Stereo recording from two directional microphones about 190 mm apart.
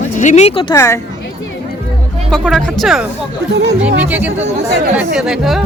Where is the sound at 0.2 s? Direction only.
35° left (ahead or behind).